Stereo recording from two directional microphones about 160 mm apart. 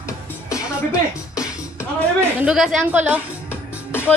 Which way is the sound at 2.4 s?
5° right (ahead or behind).